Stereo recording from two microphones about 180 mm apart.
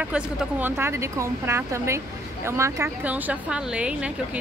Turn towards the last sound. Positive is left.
turn(degrees=-5)  # may be behind; listen again after turning